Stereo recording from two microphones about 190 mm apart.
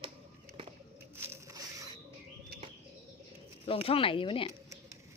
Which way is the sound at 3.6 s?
30° left (ahead or behind).